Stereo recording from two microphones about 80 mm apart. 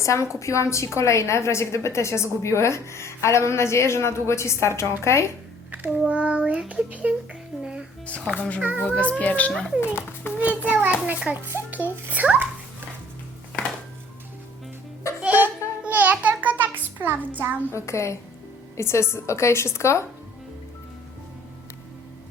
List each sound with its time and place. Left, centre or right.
0.0 s a woman's voice: left
6.1 s a child's voice: centre
7.6 s music: centre
8.0 s speech: centre
9.5 s speech: centre
9.9 s a child's voice: left
10.4 s a child's voice: centre
11.7 s a sound: centre
15.2 s music: right
15.8 s child singing: right
17.7 s a woman's voice: left